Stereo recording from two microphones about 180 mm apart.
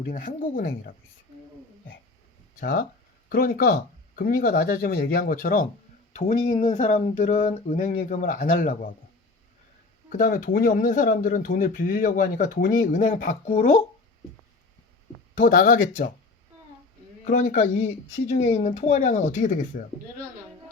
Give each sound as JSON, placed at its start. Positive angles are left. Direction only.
{"t": 0.1, "sound": "speech", "side_deg": 50}
{"t": 2.6, "sound": "speech", "side_deg": 55}
{"t": 6.1, "sound": "speech", "side_deg": 40}
{"t": 10.1, "sound": "speech", "side_deg": 55}
{"t": 15.4, "sound": "speech", "side_deg": 50}
{"t": 17.2, "sound": "speech", "side_deg": 45}